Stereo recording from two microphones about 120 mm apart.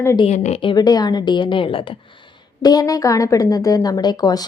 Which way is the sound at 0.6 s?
35° left (ahead or behind).